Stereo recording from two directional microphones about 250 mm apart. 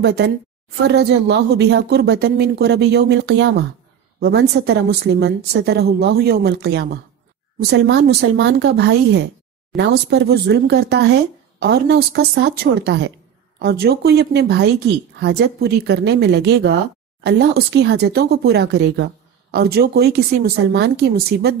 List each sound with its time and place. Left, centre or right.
0.0 s a woman's voice: right